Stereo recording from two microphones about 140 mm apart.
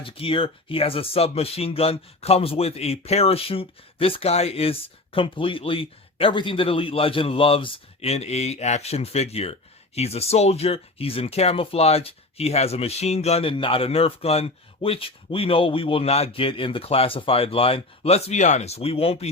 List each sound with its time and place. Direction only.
0.0 s speech: 40° left (ahead or behind)